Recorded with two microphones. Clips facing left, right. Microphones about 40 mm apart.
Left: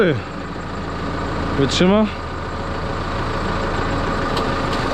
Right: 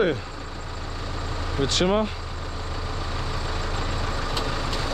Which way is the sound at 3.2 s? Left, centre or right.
Left.